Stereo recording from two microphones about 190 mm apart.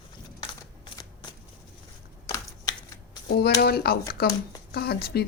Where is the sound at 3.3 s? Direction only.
55° left (ahead or behind).